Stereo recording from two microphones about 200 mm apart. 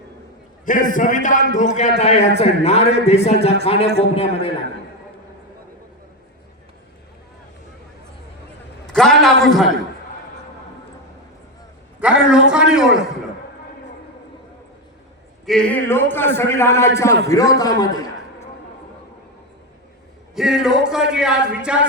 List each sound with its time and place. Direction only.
0.6 s a man's voice: 40° left (ahead or behind)
8.9 s a sound: 5° left (ahead or behind)
9.2 s speech: centre (ahead or behind)
11.9 s a man's voice: 5° right (ahead or behind)
15.4 s a man's voice: 5° left (ahead or behind)
20.3 s a man's voice: centre (ahead or behind)